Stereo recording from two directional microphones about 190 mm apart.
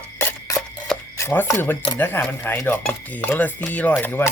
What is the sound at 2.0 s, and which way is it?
Speech, 10° left (ahead or behind).